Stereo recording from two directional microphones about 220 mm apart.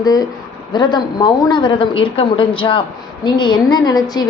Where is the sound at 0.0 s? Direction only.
15° left (ahead or behind).